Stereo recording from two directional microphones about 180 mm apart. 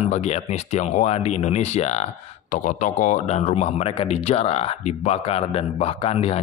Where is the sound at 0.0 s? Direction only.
40° left (ahead or behind).